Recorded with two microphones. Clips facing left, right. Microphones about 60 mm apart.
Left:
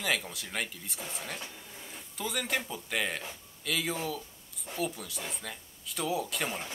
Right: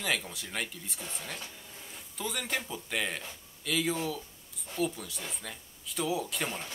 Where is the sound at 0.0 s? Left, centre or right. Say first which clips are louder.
Left 1 dB; centre.